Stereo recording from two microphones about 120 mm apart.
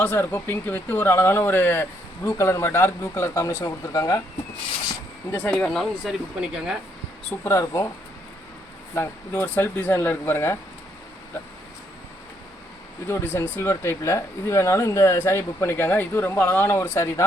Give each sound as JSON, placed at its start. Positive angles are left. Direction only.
{"t": 0.0, "sound": "speech", "side_deg": 15}
{"t": 5.5, "sound": "speech", "side_deg": 10}
{"t": 7.4, "sound": "speech", "side_deg": 25}
{"t": 9.0, "sound": "speech", "side_deg": 15}
{"t": 13.1, "sound": "speech", "side_deg": 20}